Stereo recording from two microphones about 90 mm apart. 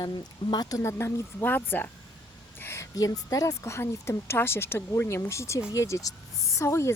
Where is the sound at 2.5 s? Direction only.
25° left (ahead or behind).